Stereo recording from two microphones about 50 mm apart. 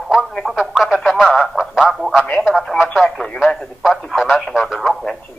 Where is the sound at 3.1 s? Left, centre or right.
Centre.